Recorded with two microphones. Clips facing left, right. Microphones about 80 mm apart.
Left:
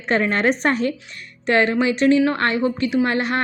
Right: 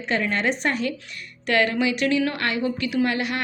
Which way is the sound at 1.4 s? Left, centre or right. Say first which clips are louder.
Left 4 dB; left.